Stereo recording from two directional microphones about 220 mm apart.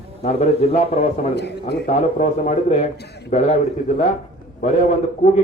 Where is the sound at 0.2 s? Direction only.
30° left (ahead or behind).